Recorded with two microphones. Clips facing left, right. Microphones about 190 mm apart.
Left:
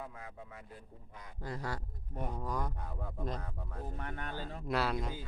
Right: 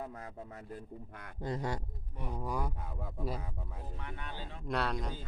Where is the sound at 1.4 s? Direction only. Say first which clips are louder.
Right 4 dB; 20° right (ahead or behind).